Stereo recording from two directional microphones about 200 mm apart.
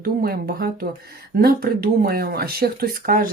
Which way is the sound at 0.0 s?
50° right (ahead or behind).